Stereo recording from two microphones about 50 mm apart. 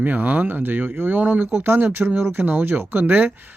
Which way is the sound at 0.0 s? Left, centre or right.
Right.